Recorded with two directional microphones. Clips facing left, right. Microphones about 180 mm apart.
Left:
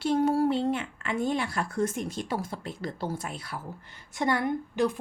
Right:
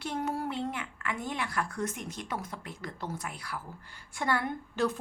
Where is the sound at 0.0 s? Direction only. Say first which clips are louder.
Left 9 dB; 30° left (ahead or behind).